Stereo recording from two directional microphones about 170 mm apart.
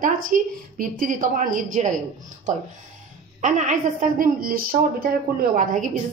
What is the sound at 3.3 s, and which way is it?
A woman's voice, 45° right (ahead or behind).